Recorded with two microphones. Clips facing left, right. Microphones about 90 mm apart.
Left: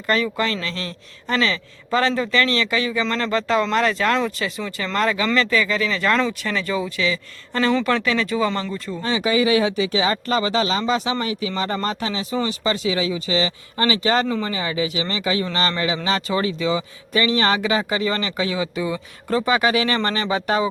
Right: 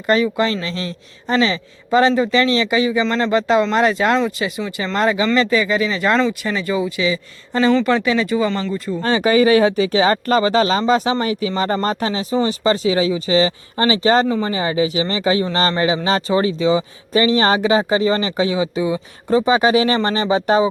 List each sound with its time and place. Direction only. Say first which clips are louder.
0.1 s speech: right 5 dB; 20° right (ahead or behind)
7.7 s speech: right 4 dB; centre (ahead or behind)
7.9 s speech: right 4 dB; 10° right (ahead or behind)
9.0 s speech: right 5 dB; 50° right (ahead or behind); by 20.7 s 25° right (ahead or behind)